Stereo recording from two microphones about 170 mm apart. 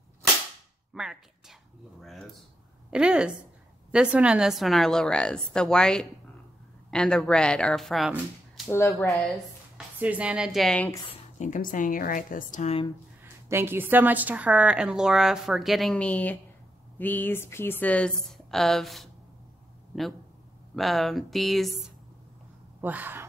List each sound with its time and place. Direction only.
0.9 s a woman's voice: 5° right (ahead or behind)
11.1 s speech: 45° left (ahead or behind)
13.2 s a woman's voice: 15° right (ahead or behind)
20.7 s a woman's voice: centre (ahead or behind)
22.8 s speech: 10° right (ahead or behind)